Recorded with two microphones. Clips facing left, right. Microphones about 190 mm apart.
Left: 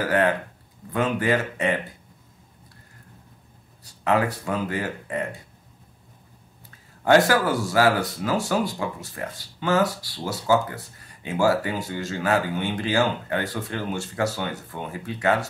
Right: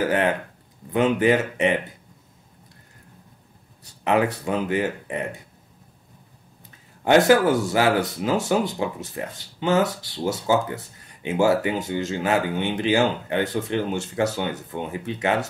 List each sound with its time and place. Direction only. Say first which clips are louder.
0.9 s speech: right 4 dB; 20° right (ahead or behind)
4.0 s speech: right 2 dB; 20° right (ahead or behind)
7.1 s speech: right 2 dB; 20° right (ahead or behind)